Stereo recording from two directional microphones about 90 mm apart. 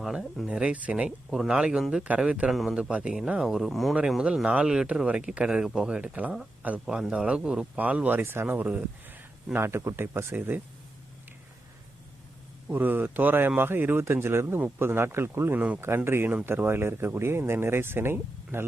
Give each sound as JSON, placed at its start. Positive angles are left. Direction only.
{"t": 0.0, "sound": "speech", "side_deg": 0}
{"t": 0.4, "sound": "speech", "side_deg": -15}
{"t": 6.0, "sound": "speech", "side_deg": -15}
{"t": 6.7, "sound": "speech", "side_deg": -5}
{"t": 8.2, "sound": "speech", "side_deg": -25}
{"t": 12.6, "sound": "speech", "side_deg": -20}